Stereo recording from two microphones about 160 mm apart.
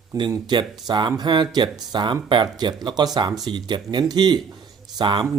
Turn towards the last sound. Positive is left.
turn(degrees=-30)  # may be behind; listen again after turning